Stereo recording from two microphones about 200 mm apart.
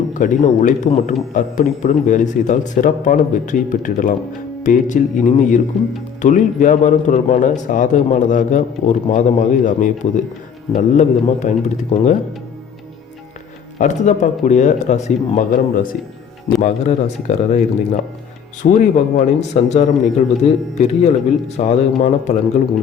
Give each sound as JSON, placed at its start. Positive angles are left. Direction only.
{"t": 0.1, "sound": "a man's voice", "side_deg": 40}
{"t": 5.7, "sound": "speech", "side_deg": 0}
{"t": 6.2, "sound": "a man's voice", "side_deg": 40}
{"t": 13.7, "sound": "a man's voice", "side_deg": 35}